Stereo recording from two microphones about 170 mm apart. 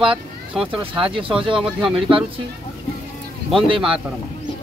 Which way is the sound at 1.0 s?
30° right (ahead or behind).